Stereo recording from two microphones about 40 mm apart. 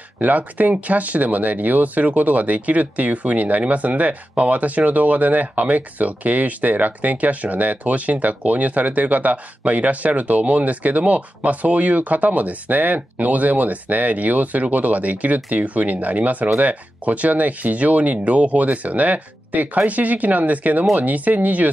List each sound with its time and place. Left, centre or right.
0.2 s speech: right